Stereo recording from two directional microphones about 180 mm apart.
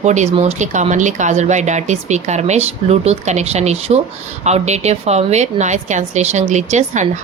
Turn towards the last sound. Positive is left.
turn(degrees=-40)  # may be behind; listen again after turning